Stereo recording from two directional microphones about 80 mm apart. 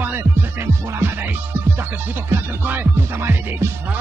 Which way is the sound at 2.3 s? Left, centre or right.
Right.